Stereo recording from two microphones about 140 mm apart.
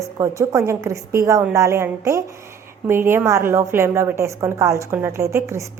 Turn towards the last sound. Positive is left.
turn(degrees=-20)  # may be behind; listen again after turning